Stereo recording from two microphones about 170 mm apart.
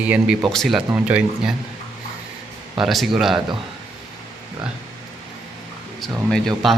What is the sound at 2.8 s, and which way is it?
Speech, centre (ahead or behind).